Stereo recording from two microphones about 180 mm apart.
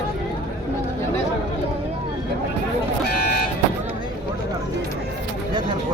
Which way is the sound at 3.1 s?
60° left (ahead or behind).